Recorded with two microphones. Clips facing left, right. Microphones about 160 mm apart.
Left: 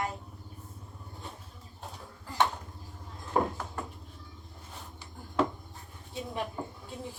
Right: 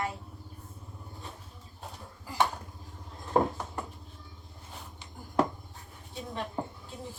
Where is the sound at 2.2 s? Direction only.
10° right (ahead or behind).